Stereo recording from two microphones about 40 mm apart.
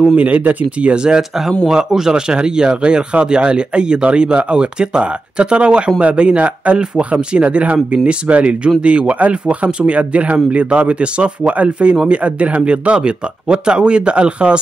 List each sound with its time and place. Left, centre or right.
0.1 s speech: right
0.9 s speech: right